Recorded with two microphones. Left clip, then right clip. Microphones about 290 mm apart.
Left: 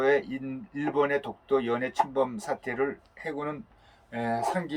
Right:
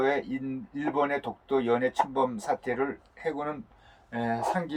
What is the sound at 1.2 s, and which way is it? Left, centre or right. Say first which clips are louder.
Speech: even; left.